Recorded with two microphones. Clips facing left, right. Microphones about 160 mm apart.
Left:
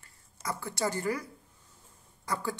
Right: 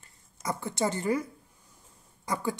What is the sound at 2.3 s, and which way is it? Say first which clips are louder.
Speech: right 3 dB; 15° right (ahead or behind).